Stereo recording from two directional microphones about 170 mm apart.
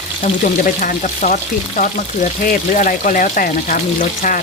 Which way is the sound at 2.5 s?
50° left (ahead or behind).